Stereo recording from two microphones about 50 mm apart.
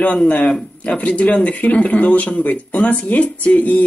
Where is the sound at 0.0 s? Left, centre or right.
Left.